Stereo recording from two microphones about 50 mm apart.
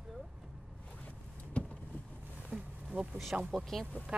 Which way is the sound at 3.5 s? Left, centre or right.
Centre.